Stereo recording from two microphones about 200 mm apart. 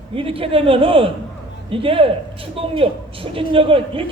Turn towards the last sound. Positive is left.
turn(degrees=-25)  # may be behind; listen again after turning